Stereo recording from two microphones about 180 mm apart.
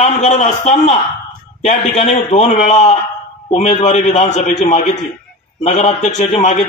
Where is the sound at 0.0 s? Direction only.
40° left (ahead or behind).